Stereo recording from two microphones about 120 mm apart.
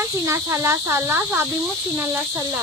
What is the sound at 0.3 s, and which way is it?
Speech, 25° right (ahead or behind).